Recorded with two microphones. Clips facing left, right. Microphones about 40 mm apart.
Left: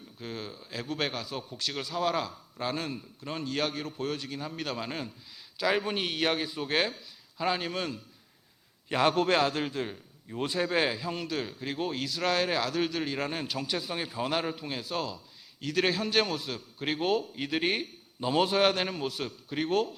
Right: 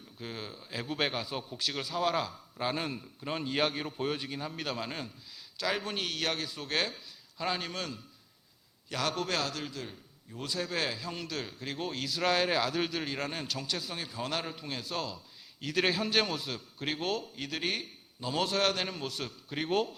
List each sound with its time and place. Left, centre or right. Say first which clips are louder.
0.2 s a man's voice: left 2 dB; centre
8.9 s a man's voice: left 8 dB; left; by 19.9 s centre